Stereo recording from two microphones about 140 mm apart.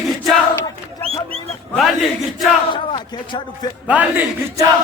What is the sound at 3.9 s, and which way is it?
Speech, 10° right (ahead or behind).